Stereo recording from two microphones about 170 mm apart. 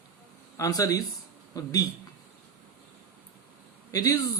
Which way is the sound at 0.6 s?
20° left (ahead or behind).